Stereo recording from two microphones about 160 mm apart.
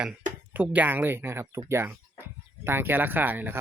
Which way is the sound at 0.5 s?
10° right (ahead or behind).